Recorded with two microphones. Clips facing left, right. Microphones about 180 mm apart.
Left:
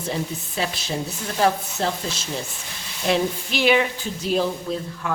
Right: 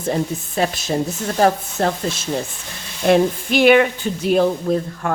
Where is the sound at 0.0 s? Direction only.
50° right (ahead or behind).